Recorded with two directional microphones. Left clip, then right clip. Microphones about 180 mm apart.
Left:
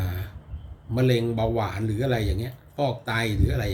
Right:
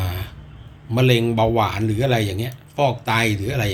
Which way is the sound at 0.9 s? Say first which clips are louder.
Right 6 dB; 15° left (ahead or behind).